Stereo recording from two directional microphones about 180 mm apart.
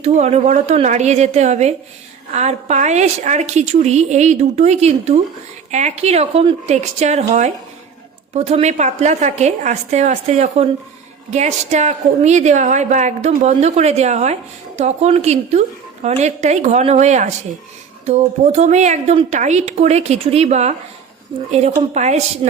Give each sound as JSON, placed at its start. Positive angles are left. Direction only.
{"t": 0.0, "sound": "a woman's voice", "side_deg": -40}